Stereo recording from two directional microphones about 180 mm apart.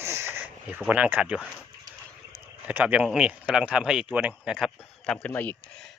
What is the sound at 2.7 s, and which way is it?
Speech, 10° right (ahead or behind).